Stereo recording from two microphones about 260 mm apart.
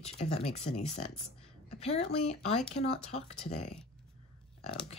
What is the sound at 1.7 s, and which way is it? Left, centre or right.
Speech, left.